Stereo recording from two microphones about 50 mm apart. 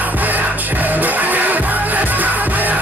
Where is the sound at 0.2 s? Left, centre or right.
Right.